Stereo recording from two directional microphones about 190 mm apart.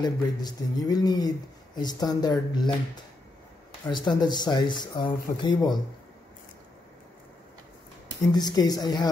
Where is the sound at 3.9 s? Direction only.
25° left (ahead or behind).